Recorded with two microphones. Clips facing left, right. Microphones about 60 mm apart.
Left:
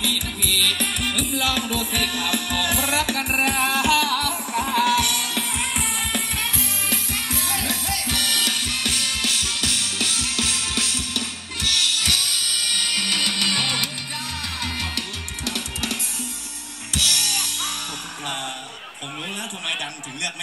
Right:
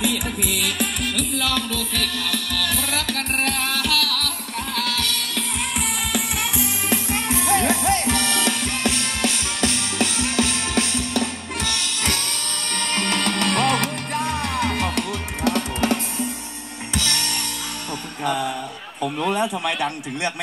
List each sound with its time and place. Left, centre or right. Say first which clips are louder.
0.0 s music: right 3 dB; centre
1.0 s music: even; centre
6.5 s music: right 4 dB; centre; by 17.4 s right
19.2 s a sound: right 13 dB; right